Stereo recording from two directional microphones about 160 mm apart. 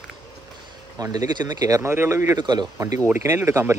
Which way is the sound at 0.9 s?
25° right (ahead or behind).